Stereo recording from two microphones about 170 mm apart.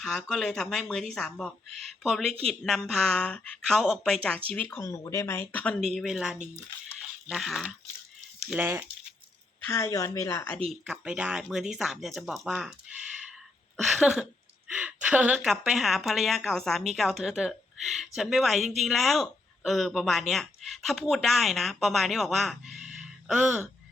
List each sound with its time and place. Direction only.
0.0 s speech: centre (ahead or behind)
8.5 s speech: 10° right (ahead or behind)
9.6 s speech: 15° left (ahead or behind)
10.7 s speech: centre (ahead or behind)
13.7 s speech: centre (ahead or behind)